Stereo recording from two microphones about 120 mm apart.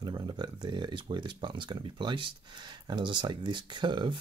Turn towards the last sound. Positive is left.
turn(degrees=-40)  # may be behind; listen again after turning